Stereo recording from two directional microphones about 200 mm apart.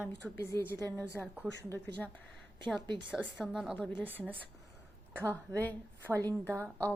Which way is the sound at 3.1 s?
Centre (ahead or behind).